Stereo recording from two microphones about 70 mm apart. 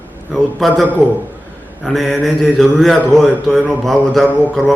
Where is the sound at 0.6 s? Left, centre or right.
Centre.